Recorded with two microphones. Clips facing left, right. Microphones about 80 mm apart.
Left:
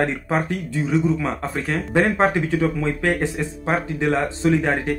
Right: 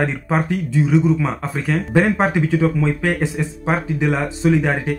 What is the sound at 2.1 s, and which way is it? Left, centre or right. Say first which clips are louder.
Speech: right 1 dB; centre.